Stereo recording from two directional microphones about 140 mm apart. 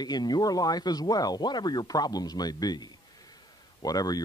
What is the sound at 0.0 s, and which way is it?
Speech, 30° left (ahead or behind).